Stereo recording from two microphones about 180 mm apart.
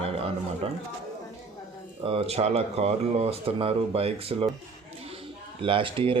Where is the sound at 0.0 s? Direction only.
30° right (ahead or behind).